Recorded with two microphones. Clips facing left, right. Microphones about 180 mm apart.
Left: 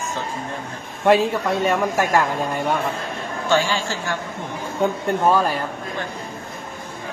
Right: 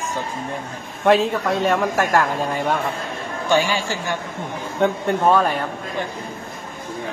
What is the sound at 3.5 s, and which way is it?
Speech, 15° right (ahead or behind).